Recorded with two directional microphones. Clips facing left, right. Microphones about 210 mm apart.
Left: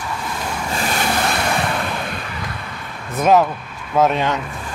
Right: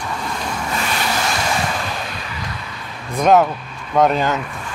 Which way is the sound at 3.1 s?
Centre (ahead or behind).